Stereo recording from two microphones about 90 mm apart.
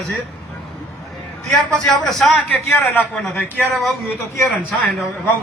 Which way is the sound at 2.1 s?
5° left (ahead or behind).